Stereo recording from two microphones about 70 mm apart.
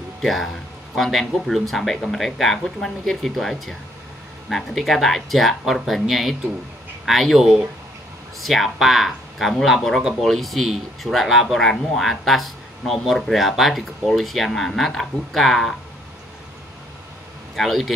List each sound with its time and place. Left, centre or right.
0.2 s speech: centre
17.6 s speech: centre